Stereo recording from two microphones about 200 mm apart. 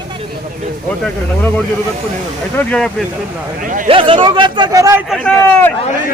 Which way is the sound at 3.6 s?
40° right (ahead or behind).